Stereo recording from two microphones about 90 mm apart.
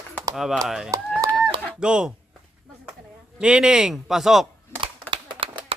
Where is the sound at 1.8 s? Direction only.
10° right (ahead or behind).